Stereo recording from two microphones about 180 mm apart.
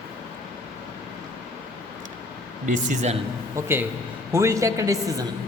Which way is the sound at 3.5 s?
10° right (ahead or behind).